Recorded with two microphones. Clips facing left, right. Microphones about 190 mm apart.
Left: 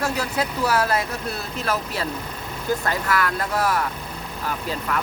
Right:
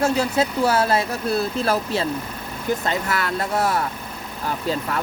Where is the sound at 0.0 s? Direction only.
25° right (ahead or behind).